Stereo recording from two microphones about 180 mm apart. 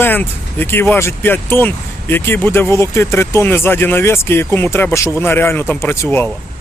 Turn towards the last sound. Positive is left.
turn(degrees=10)  # may be behind; listen again after turning